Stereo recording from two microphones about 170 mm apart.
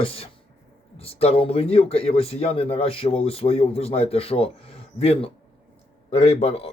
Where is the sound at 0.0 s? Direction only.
35° left (ahead or behind).